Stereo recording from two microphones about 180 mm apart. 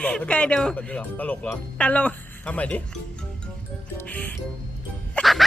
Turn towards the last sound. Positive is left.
turn(degrees=0)  # may be behind; listen again after turning